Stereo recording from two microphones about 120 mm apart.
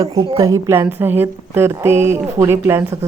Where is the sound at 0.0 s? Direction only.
30° right (ahead or behind).